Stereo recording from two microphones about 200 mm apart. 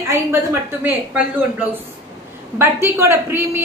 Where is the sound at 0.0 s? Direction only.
15° right (ahead or behind).